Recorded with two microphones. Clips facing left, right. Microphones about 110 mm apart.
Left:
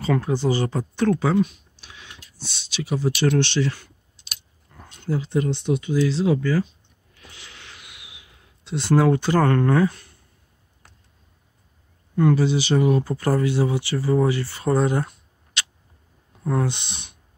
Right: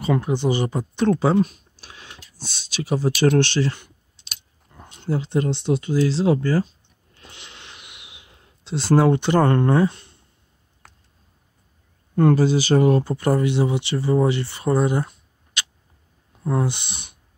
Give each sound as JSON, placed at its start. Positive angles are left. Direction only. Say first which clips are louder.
{"t": 0.0, "sound": "speech", "louder": "right 1 dB", "side_deg": -15}
{"t": 1.4, "sound": "speech", "louder": "right 1 dB", "side_deg": -45}
{"t": 4.9, "sound": "speech", "louder": "right 1 dB", "side_deg": -30}
{"t": 7.2, "sound": "a sound", "louder": "right 1 dB", "side_deg": -25}
{"t": 12.2, "sound": "speech", "louder": "right 2 dB", "side_deg": -45}
{"t": 13.0, "sound": "speech", "louder": "right 1 dB", "side_deg": -20}
{"t": 16.4, "sound": "speech", "louder": "right 1 dB", "side_deg": -10}